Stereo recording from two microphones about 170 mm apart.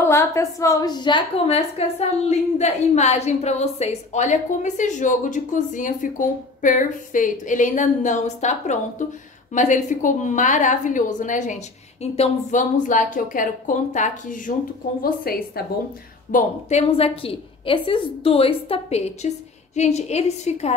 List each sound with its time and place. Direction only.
0.0 s a woman's voice: 15° left (ahead or behind); by 14.5 s 50° left (ahead or behind)
15.0 s a woman's voice: 60° left (ahead or behind)
16.3 s a woman's voice: 45° left (ahead or behind)